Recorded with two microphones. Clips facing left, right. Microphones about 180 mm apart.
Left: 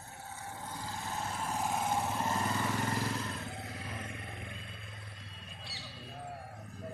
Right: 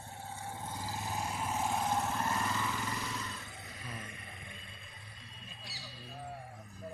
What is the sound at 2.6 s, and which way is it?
Vehicle, 55° left (ahead or behind).